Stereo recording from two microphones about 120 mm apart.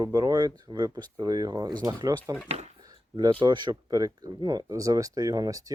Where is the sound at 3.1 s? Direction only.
45° right (ahead or behind).